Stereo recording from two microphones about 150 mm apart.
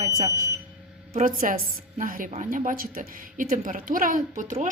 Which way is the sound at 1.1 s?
65° right (ahead or behind).